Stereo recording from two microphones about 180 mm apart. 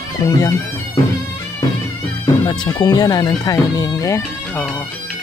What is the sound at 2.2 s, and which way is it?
Speech, 25° left (ahead or behind).